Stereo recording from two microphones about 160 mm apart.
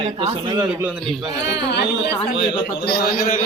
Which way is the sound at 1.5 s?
90° left.